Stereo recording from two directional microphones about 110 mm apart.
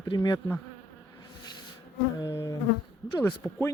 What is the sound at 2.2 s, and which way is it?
Speech, 30° left (ahead or behind).